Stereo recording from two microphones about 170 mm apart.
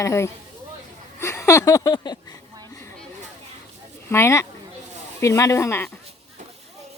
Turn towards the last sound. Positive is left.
turn(degrees=15)  # may be behind; listen again after turning